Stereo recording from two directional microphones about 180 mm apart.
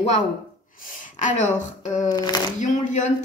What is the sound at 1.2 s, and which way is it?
Speech, 45° left (ahead or behind).